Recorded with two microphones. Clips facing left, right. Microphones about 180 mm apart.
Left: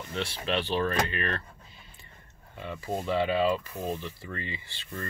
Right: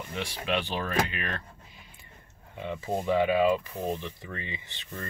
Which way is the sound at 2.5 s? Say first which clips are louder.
Right 2 dB; 20° right (ahead or behind).